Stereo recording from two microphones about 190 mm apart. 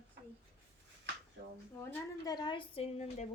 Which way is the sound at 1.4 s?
75° right (ahead or behind).